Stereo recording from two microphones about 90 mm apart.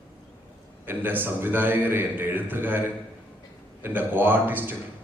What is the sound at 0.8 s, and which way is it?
A man's voice, 20° right (ahead or behind).